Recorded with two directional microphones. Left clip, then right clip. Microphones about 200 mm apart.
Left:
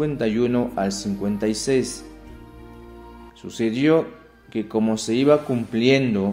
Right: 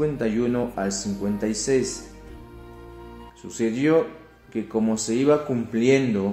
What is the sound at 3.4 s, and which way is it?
Speech, 35° left (ahead or behind).